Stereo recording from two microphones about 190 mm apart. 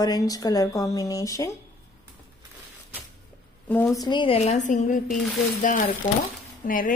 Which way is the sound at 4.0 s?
25° left (ahead or behind).